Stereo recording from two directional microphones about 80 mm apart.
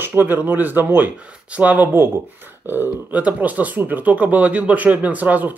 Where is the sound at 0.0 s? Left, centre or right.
Right.